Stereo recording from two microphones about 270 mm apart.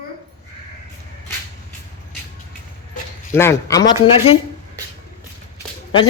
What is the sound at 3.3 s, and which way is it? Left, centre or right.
Speech, centre.